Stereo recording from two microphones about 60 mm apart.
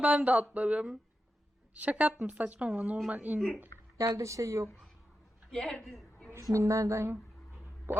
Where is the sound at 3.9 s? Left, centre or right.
Right.